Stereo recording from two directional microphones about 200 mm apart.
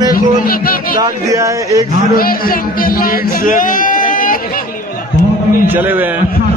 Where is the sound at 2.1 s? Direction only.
45° left (ahead or behind).